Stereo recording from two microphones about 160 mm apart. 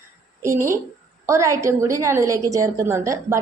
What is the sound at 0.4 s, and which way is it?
A woman's voice, 15° right (ahead or behind).